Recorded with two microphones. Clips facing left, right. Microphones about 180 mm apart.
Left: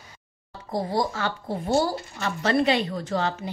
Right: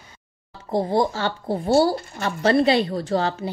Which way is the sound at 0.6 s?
30° right (ahead or behind).